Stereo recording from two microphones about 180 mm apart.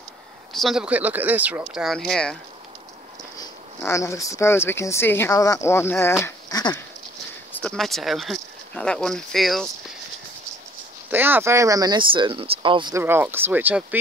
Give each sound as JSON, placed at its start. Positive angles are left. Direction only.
{"t": 0.5, "sound": "speech", "side_deg": 0}
{"t": 3.3, "sound": "speech", "side_deg": 15}
{"t": 7.5, "sound": "speech", "side_deg": 5}
{"t": 11.1, "sound": "speech", "side_deg": -10}
{"t": 13.0, "sound": "speech", "side_deg": -10}